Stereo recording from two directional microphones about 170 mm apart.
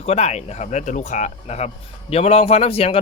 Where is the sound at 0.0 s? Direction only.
40° left (ahead or behind).